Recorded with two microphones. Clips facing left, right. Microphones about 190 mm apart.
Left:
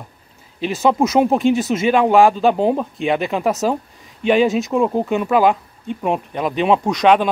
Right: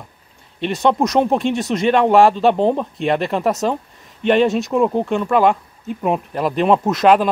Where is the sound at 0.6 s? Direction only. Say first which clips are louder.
Even; centre (ahead or behind).